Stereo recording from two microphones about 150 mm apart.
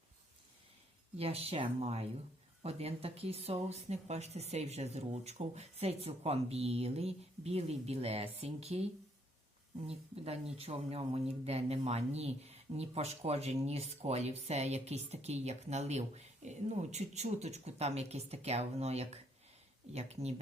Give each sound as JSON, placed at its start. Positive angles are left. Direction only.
{"t": 1.1, "sound": "speech", "side_deg": -40}